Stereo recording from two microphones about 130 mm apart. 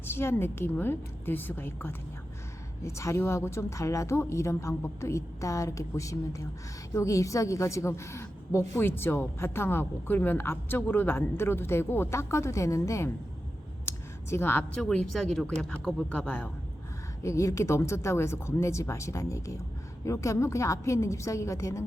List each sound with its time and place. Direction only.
0.0 s a woman's voice: 20° left (ahead or behind)
13.8 s a sound: 20° left (ahead or behind)
14.8 s speech: 5° left (ahead or behind)
17.2 s a woman's voice: 25° left (ahead or behind)